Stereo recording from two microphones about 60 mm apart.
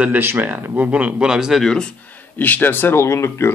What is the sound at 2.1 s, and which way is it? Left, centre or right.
Speech, left.